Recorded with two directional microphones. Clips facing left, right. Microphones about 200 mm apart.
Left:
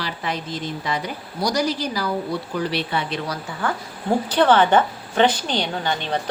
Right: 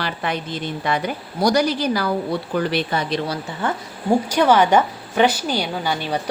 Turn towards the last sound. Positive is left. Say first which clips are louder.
# right 1 dB
turn(degrees=-10)  # may be behind; listen again after turning